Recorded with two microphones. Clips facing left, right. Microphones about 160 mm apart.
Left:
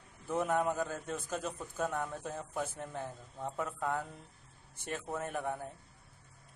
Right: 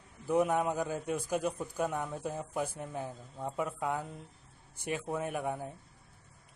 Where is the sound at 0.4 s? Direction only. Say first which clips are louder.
Right 2 dB; 15° right (ahead or behind).